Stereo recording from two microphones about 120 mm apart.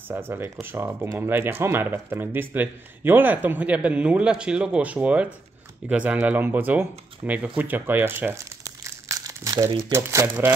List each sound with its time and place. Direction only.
0.1 s speech: 20° right (ahead or behind)
9.1 s crumpling: 30° right (ahead or behind)
9.7 s speech: 50° right (ahead or behind)
9.9 s speech: 25° right (ahead or behind)